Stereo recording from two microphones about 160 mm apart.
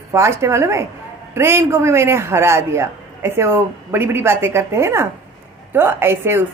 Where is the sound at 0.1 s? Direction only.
15° right (ahead or behind).